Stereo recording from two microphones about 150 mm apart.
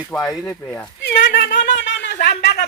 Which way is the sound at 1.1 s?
80° left.